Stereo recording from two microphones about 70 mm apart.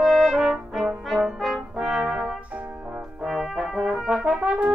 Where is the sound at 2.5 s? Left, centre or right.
Centre.